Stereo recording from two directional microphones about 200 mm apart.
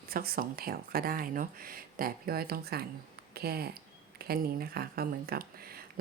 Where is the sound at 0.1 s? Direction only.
50° right (ahead or behind).